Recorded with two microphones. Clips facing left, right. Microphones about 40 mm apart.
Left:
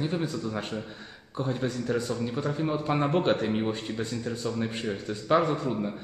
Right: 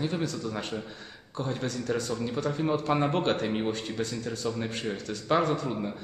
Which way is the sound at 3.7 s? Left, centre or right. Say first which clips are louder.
Left 1 dB; centre.